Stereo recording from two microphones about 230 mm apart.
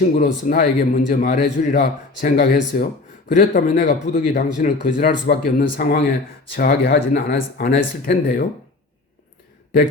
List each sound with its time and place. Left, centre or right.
0.2 s a man's voice: left